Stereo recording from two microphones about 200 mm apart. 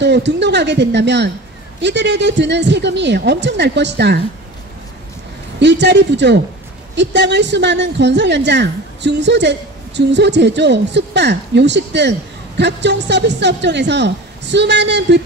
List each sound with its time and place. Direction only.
0.0 s a woman's voice: 60° right (ahead or behind)
5.6 s a woman's voice: 60° right (ahead or behind)